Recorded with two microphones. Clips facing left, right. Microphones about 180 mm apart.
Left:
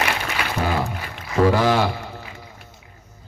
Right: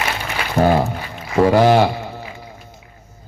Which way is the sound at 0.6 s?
50° right (ahead or behind).